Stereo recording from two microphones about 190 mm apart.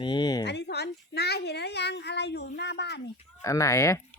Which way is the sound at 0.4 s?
60° left (ahead or behind).